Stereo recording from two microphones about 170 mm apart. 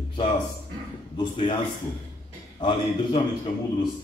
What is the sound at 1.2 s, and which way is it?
Speech, 30° left (ahead or behind).